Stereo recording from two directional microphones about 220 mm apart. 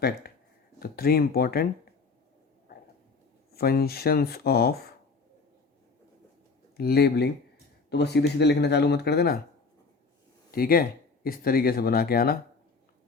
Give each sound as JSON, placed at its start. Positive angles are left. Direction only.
{"t": 0.8, "sound": "speech", "side_deg": 45}
{"t": 3.5, "sound": "speech", "side_deg": 45}
{"t": 6.7, "sound": "speech", "side_deg": 45}
{"t": 10.5, "sound": "speech", "side_deg": 40}